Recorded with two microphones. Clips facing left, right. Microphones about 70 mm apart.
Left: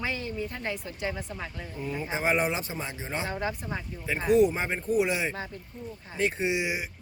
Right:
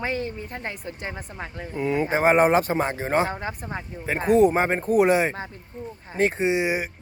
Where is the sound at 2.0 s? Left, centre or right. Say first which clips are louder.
Right 8 dB; right.